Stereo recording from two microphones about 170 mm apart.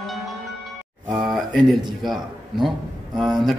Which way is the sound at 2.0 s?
Centre (ahead or behind).